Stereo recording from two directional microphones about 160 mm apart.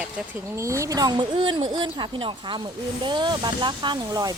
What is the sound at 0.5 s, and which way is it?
Speech, 20° right (ahead or behind).